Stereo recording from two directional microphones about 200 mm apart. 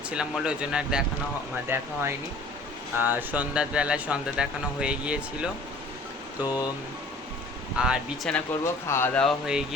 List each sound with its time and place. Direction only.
0.1 s speech: 5° right (ahead or behind)
6.4 s speech: 20° left (ahead or behind)
7.8 s speech: centre (ahead or behind)
8.6 s speech: 10° left (ahead or behind)